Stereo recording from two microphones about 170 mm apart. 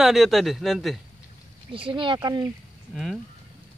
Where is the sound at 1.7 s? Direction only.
30° right (ahead or behind).